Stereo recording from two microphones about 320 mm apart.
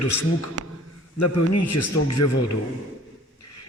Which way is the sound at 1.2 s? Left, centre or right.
Left.